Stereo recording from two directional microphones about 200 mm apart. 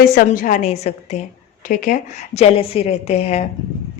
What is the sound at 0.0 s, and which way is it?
A woman's voice, 45° left (ahead or behind).